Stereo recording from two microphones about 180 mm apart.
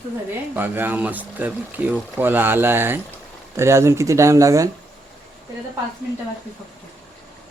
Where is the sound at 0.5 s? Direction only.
10° right (ahead or behind).